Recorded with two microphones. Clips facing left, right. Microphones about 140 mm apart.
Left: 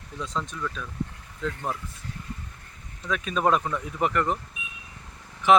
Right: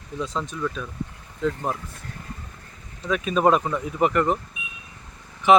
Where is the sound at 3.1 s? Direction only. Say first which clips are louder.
Right 4 dB; 5° right (ahead or behind).